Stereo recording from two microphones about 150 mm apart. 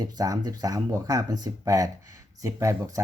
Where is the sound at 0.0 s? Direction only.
25° right (ahead or behind).